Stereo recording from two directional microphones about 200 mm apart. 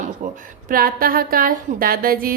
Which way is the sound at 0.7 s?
45° right (ahead or behind).